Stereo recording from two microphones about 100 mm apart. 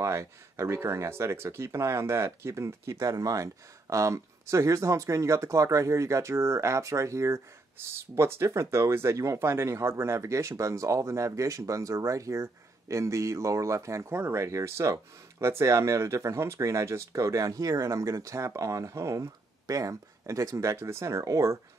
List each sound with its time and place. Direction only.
0.0 s speech: 30° right (ahead or behind)